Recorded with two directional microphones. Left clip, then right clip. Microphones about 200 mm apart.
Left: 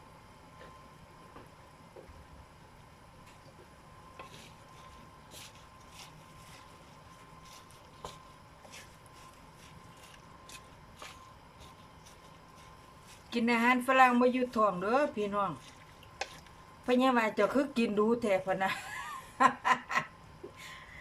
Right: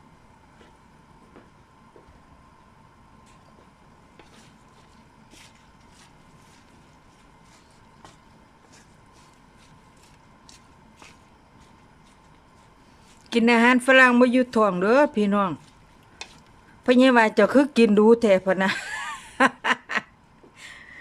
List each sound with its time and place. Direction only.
13.3 s speech: 50° right (ahead or behind)
16.8 s speech: 50° right (ahead or behind)